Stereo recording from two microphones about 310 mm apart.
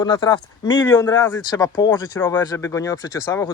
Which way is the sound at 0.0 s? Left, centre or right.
Centre.